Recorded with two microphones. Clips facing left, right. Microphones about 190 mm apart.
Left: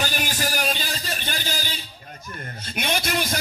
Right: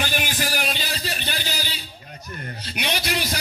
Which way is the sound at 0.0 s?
40° left (ahead or behind).